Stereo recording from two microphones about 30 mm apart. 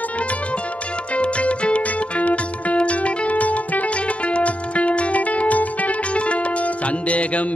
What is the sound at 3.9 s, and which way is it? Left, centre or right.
Music, left.